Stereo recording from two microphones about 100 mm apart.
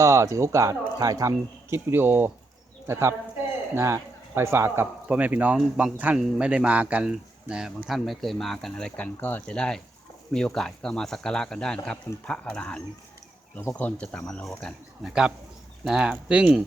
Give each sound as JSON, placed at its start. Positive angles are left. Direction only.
{"t": 0.0, "sound": "speech", "side_deg": -30}
{"t": 15.8, "sound": "speech", "side_deg": -10}